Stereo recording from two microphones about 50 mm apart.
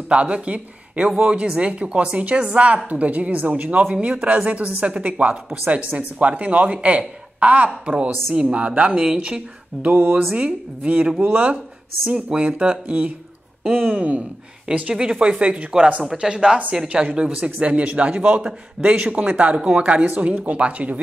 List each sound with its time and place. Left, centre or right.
0.1 s speech: right
9.8 s speech: right
14.7 s speech: centre
17.4 s speech: right